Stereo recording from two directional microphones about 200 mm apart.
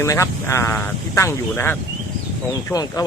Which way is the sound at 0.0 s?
15° left (ahead or behind).